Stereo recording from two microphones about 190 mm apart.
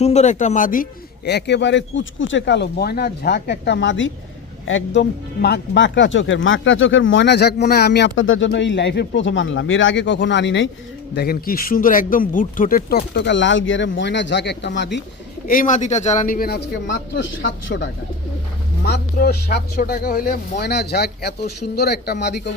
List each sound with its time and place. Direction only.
0.0 s a man's voice: 35° left (ahead or behind); by 10.7 s 70° left (ahead or behind)
11.1 s a man's voice: 55° left (ahead or behind)
15.4 s a man's voice: 45° left (ahead or behind); by 17.9 s 70° left (ahead or behind)
18.9 s a man's voice: 55° left (ahead or behind)